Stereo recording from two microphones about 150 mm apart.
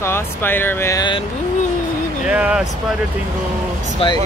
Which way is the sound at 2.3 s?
5° right (ahead or behind).